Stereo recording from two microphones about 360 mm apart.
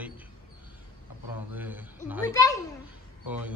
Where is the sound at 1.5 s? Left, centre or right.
Centre.